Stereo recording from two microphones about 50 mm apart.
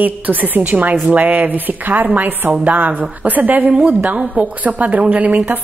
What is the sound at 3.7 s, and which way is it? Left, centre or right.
Speech, right.